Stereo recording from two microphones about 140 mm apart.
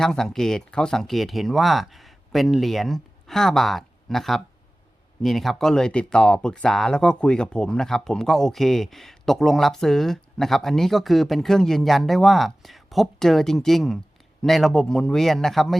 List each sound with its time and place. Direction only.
0.0 s speech: 5° left (ahead or behind)